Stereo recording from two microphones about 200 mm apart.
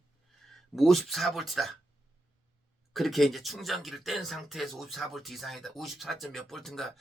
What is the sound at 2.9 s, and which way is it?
Speech, centre (ahead or behind).